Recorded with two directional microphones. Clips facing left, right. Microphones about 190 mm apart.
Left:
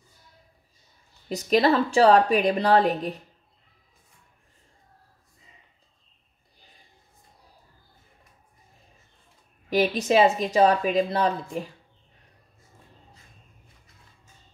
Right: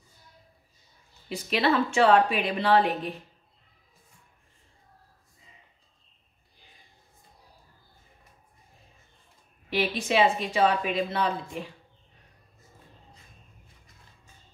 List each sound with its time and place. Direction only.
1.3 s a woman's voice: 40° left (ahead or behind)
9.7 s a woman's voice: 40° left (ahead or behind)